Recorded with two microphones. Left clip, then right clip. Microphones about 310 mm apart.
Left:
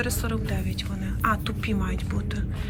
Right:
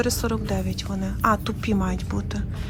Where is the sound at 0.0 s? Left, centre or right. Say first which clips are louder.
Right 5 dB; centre.